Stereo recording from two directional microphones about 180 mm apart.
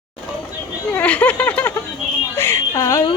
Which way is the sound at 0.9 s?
10° left (ahead or behind).